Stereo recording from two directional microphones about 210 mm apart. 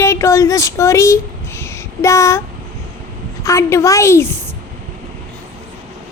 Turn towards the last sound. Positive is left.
turn(degrees=10)  # may be behind; listen again after turning